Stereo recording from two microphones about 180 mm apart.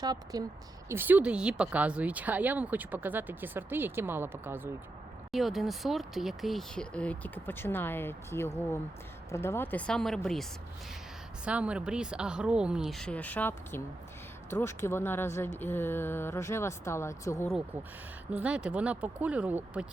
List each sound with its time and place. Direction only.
0.0 s a woman's voice: 20° right (ahead or behind)
5.3 s speech: centre (ahead or behind)
11.4 s speech: 5° right (ahead or behind); by 17.5 s 15° left (ahead or behind)
18.3 s speech: 5° right (ahead or behind)